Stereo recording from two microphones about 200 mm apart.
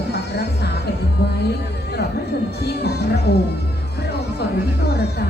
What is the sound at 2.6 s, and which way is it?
Music, 55° left (ahead or behind).